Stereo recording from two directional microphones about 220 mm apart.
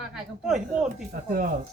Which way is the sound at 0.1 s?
Centre (ahead or behind).